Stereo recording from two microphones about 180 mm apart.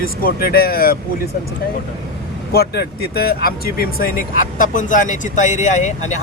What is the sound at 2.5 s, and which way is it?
Speech, 60° left (ahead or behind).